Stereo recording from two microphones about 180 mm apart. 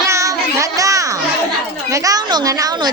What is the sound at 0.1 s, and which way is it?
Child singing, 15° right (ahead or behind).